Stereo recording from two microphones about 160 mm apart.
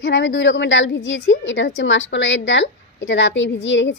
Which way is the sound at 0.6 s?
90° left.